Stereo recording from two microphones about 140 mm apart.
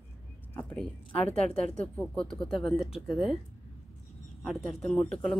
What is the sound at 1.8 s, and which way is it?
Speech, 5° left (ahead or behind).